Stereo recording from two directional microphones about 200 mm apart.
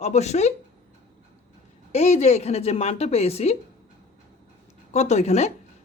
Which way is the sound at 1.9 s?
35° left (ahead or behind).